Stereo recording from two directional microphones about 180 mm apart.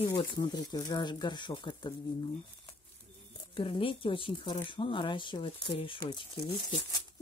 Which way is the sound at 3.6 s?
30° left (ahead or behind).